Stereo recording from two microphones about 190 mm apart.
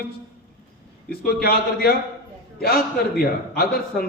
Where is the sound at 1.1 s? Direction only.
55° left (ahead or behind).